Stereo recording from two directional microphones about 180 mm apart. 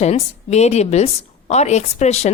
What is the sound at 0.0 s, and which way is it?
A woman's voice, 40° left (ahead or behind).